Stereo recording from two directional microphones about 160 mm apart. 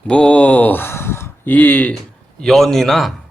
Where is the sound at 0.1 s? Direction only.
5° left (ahead or behind).